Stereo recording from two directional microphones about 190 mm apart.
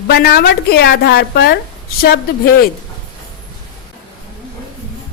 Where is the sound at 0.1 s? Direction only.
55° left (ahead or behind).